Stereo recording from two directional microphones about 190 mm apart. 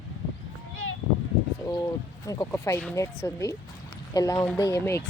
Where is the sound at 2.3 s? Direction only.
15° left (ahead or behind).